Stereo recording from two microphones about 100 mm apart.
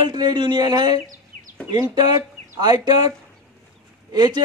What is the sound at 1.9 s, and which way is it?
A man's voice, 45° right (ahead or behind).